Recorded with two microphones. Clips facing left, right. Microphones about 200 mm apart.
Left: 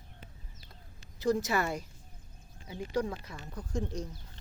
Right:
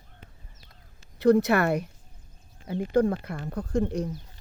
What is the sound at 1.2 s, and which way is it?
Speech, 60° right (ahead or behind).